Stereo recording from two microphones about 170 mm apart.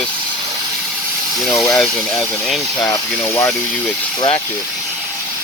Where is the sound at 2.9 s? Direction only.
15° left (ahead or behind).